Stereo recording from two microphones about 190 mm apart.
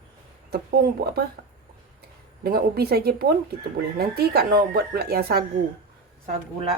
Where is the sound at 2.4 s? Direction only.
55° right (ahead or behind).